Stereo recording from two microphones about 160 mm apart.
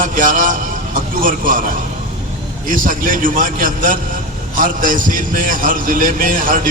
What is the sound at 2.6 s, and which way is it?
A man's voice, 60° right (ahead or behind).